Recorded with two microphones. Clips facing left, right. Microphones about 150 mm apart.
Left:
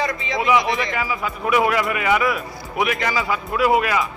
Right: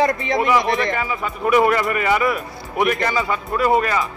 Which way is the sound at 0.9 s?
Centre (ahead or behind).